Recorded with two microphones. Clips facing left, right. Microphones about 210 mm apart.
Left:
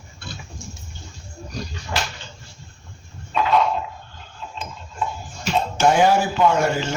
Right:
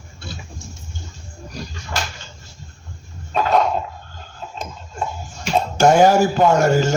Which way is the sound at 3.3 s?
45° right (ahead or behind).